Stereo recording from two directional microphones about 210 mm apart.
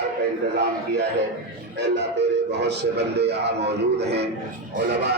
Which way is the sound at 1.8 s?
55° right (ahead or behind).